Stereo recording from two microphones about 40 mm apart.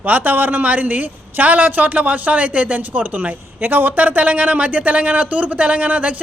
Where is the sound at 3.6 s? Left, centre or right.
Right.